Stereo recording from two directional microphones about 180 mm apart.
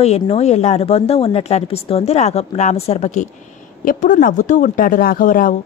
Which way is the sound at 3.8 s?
50° left (ahead or behind).